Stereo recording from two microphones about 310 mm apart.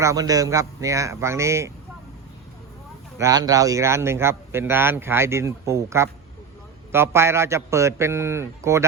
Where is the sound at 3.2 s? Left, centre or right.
Centre.